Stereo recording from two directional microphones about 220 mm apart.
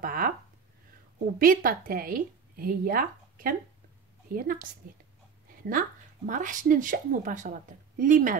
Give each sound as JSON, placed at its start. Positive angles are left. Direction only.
{"t": 0.0, "sound": "a sound", "side_deg": -40}
{"t": 1.4, "sound": "a woman's voice", "side_deg": -40}
{"t": 5.7, "sound": "speech", "side_deg": -35}